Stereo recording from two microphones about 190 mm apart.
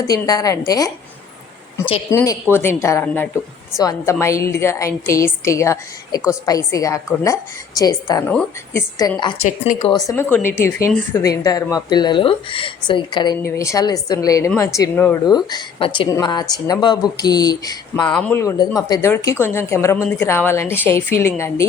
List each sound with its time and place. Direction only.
0.0 s speech: 20° left (ahead or behind)
2.0 s speech: 15° left (ahead or behind)
8.3 s speech: 5° left (ahead or behind)
9.0 s speech: 20° left (ahead or behind)
9.4 s speech: 40° left (ahead or behind)
9.9 s speech: 20° left (ahead or behind)
15.4 s speech: 25° left (ahead or behind)
18.2 s speech: 10° left (ahead or behind)